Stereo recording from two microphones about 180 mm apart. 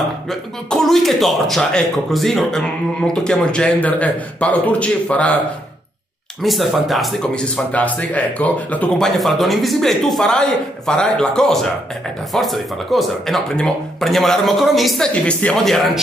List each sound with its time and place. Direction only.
0.3 s speech: centre (ahead or behind)
6.4 s speech: centre (ahead or behind)